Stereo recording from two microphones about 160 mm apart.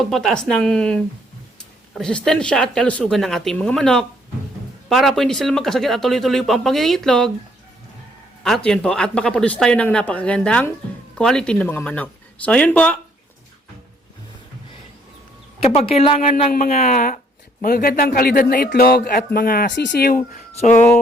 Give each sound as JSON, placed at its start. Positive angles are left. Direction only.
{"t": 0.0, "sound": "speech", "side_deg": 0}
{"t": 8.4, "sound": "speech", "side_deg": 5}
{"t": 15.6, "sound": "speech", "side_deg": 40}
{"t": 16.3, "sound": "speech", "side_deg": 55}